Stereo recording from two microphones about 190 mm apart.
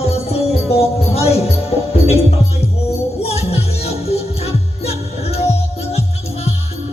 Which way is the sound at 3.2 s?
35° left (ahead or behind).